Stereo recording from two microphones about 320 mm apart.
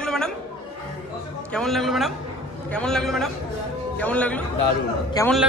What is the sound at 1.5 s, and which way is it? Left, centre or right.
A man's voice, centre.